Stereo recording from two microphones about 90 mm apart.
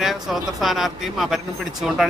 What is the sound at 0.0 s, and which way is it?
A man's voice, centre (ahead or behind).